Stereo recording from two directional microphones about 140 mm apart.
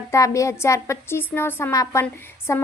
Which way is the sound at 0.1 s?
20° left (ahead or behind).